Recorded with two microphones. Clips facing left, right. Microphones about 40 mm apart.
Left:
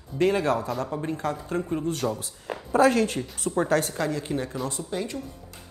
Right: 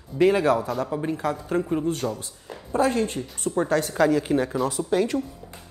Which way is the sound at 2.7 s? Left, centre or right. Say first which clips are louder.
Left 2 dB; left.